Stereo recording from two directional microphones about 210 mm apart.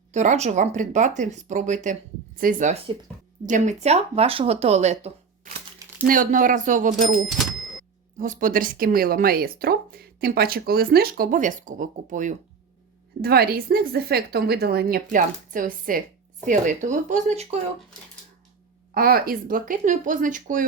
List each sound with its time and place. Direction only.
0.1 s speech: 35° right (ahead or behind)
7.3 s a sound: centre (ahead or behind)
8.2 s speech: 40° right (ahead or behind)
18.9 s speech: 45° right (ahead or behind)